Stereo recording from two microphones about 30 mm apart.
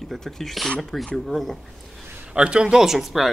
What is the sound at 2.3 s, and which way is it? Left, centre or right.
Speech, right.